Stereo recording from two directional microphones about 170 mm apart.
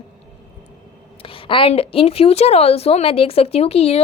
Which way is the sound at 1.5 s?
30° left (ahead or behind).